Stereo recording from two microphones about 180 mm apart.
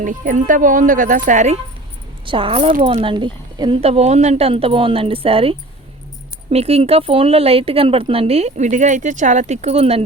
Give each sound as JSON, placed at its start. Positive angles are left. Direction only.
{"t": 0.0, "sound": "speech", "side_deg": -45}
{"t": 2.2, "sound": "a woman's voice", "side_deg": -30}